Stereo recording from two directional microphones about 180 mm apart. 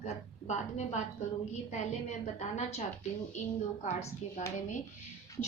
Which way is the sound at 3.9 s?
35° left (ahead or behind).